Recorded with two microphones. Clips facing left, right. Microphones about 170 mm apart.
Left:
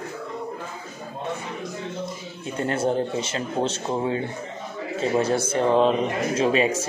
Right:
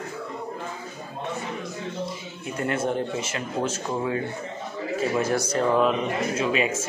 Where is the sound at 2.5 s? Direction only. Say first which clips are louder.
Left 2 dB; 35° left (ahead or behind).